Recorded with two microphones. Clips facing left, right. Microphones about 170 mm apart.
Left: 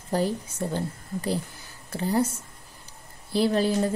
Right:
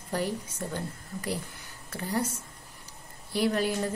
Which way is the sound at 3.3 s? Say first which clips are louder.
Left 4 dB; 30° left (ahead or behind).